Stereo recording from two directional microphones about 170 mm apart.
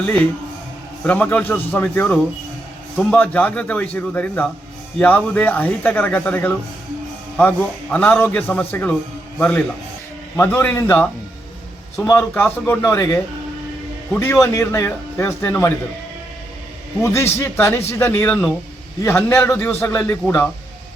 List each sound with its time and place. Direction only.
0.0 s a man's voice: 10° left (ahead or behind)
12.3 s a man's voice: 10° left (ahead or behind)
17.0 s a man's voice: 15° left (ahead or behind)